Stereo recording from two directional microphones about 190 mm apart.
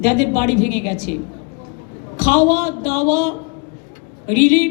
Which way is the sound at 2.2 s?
40° left (ahead or behind).